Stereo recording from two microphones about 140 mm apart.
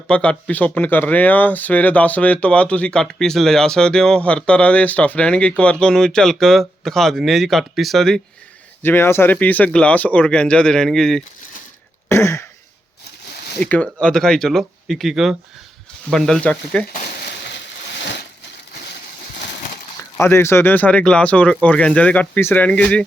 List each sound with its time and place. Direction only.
0.1 s speech: 5° left (ahead or behind)
8.8 s speech: 15° left (ahead or behind)
12.0 s throat clearing: 20° left (ahead or behind)
13.6 s speech: 10° left (ahead or behind)
16.9 s a sound: 80° left
20.1 s speech: 20° left (ahead or behind)